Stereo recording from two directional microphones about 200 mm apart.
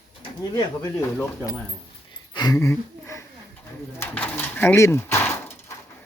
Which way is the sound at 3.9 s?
10° left (ahead or behind).